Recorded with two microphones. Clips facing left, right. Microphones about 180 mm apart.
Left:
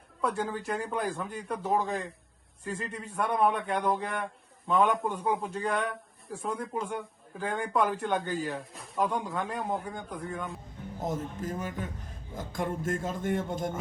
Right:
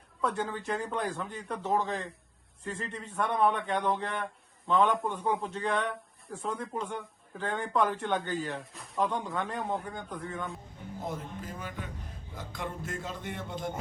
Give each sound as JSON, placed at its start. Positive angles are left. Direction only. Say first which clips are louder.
{"t": 0.2, "sound": "a man's voice", "louder": "left 1 dB", "side_deg": 10}
{"t": 11.0, "sound": "a man's voice", "louder": "left 5 dB", "side_deg": 45}